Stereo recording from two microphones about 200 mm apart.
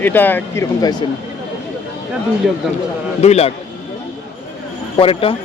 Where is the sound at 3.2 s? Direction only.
30° left (ahead or behind).